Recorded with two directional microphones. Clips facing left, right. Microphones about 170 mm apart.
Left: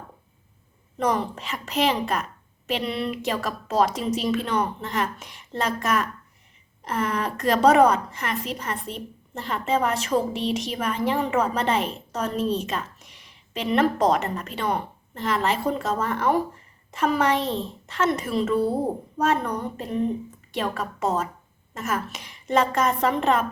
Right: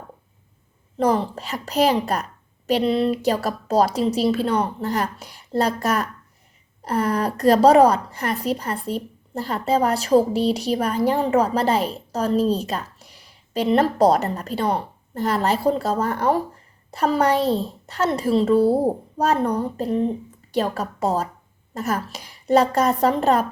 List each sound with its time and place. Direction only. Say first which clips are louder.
0.9 s a woman's voice: right 4 dB; 30° right (ahead or behind)